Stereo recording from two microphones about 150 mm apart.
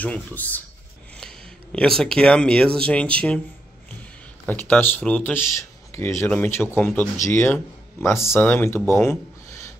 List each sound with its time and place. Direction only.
0.0 s speech: 10° left (ahead or behind)
4.5 s speech: 10° left (ahead or behind)